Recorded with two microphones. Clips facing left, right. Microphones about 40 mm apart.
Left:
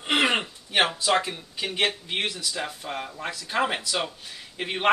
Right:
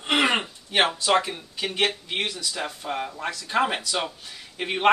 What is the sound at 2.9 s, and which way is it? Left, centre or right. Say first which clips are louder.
Speech: right 3 dB; centre.